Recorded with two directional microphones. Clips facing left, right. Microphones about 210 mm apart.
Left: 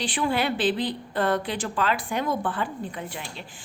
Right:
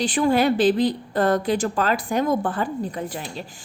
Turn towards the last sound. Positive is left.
turn(degrees=-40)  # may be behind; listen again after turning